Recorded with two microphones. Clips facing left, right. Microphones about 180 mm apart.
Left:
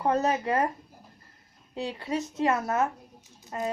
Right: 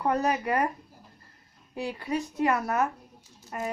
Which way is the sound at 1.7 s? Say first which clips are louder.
Even; 20° left (ahead or behind).